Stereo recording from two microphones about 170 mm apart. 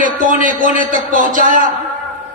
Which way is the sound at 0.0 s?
50° right (ahead or behind).